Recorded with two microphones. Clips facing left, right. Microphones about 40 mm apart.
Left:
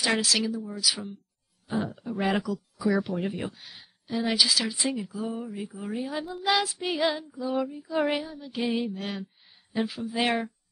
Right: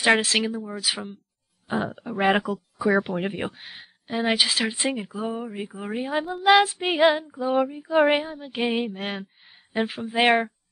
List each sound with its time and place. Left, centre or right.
0.0 s speech: right